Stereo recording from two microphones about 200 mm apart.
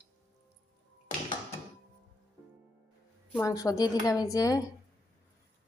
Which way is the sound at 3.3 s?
15° left (ahead or behind).